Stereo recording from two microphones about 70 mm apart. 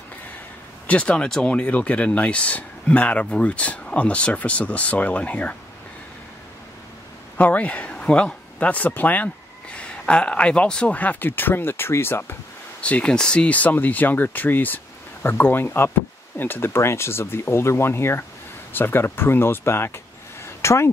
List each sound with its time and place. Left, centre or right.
0.8 s speech: centre
7.3 s speech: left
12.8 s speech: centre; by 20.0 s left
20.4 s a sound: left